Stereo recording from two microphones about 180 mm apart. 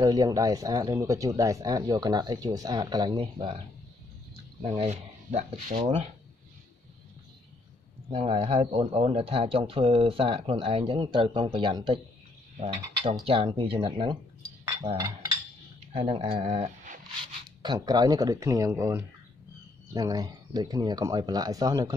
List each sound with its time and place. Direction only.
0.0 s speech: 20° right (ahead or behind); by 5.9 s 45° right (ahead or behind)
8.1 s speech: 30° right (ahead or behind)
12.5 s mechanisms: 30° right (ahead or behind)
13.2 s speech: 30° right (ahead or behind)
16.3 s speech: 40° right (ahead or behind)
17.6 s speech: 25° right (ahead or behind)